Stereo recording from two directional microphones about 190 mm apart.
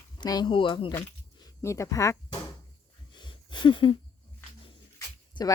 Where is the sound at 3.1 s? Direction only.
25° left (ahead or behind).